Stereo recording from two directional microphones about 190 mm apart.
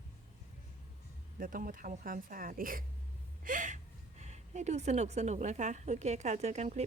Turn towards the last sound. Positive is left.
turn(degrees=-35)  # may be behind; listen again after turning